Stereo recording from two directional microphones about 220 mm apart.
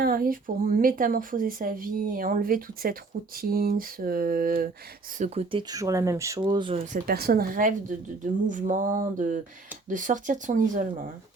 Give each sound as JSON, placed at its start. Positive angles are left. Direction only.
{"t": 0.0, "sound": "speech", "side_deg": -40}
{"t": 6.9, "sound": "speech", "side_deg": -45}